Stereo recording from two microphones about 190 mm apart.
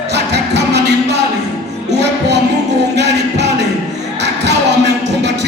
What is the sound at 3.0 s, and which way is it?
Music, 65° right (ahead or behind).